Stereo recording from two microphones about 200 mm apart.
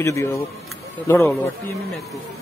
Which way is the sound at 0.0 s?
15° left (ahead or behind).